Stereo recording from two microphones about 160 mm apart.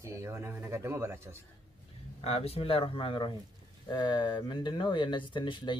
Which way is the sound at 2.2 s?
40° left (ahead or behind).